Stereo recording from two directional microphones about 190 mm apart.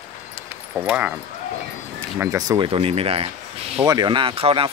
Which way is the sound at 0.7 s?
5° right (ahead or behind).